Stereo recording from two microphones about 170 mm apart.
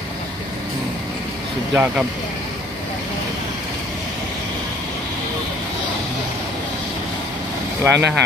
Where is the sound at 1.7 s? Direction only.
5° right (ahead or behind).